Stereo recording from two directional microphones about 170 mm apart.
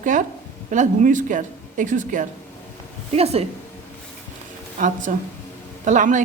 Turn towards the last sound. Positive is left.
turn(degrees=-45)  # may be behind; listen again after turning